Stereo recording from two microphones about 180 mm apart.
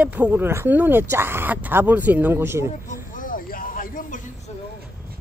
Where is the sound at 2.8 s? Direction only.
45° left (ahead or behind).